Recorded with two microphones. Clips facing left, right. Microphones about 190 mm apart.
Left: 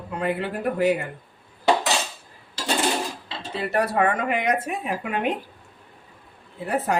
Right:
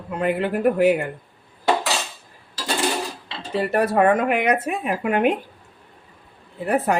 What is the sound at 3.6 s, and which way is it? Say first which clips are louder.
Speech: right 4 dB; 50° right (ahead or behind).